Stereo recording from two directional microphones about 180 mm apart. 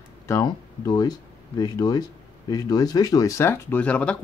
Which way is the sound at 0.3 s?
20° left (ahead or behind).